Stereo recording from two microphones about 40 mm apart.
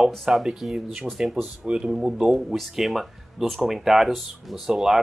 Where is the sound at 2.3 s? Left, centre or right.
Centre.